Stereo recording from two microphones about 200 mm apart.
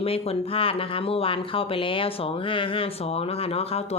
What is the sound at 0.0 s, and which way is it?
Speech, 30° left (ahead or behind).